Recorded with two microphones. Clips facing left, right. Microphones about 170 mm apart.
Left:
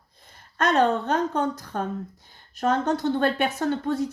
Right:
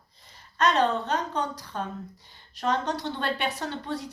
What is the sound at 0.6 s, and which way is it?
A woman's voice, 50° left (ahead or behind).